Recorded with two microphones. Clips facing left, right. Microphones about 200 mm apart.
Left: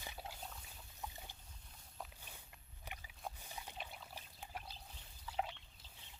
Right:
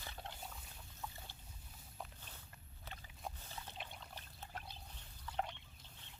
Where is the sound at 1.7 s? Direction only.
Centre (ahead or behind).